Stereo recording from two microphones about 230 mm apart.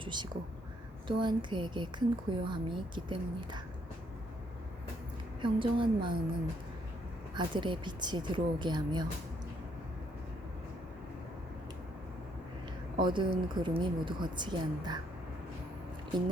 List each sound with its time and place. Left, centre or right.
0.0 s a woman's voice: centre
5.4 s a woman's voice: right
7.3 s a woman's voice: right
13.0 s a woman's voice: centre